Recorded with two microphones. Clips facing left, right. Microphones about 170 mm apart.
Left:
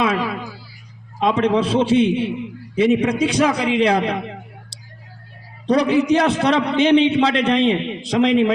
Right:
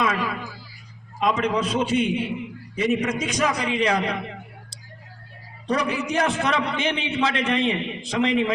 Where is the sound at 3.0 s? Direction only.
35° left (ahead or behind).